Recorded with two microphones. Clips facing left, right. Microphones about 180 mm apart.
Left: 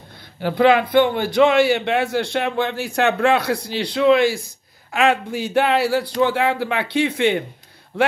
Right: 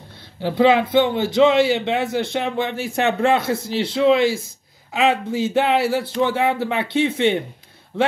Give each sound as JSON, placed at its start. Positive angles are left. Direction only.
{"t": 0.4, "sound": "a man's voice", "side_deg": -25}